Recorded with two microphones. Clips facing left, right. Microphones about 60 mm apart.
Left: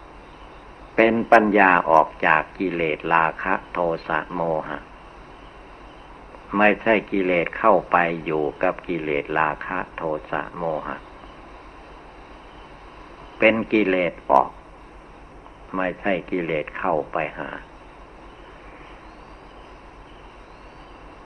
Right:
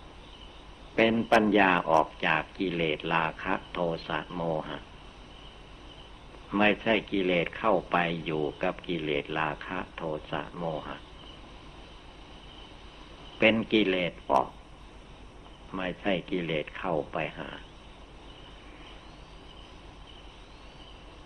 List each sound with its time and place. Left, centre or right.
0.9 s speech: left
6.5 s speech: left
13.4 s speech: left
15.7 s speech: left